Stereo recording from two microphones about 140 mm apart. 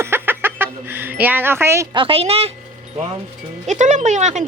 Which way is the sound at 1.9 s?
40° right (ahead or behind).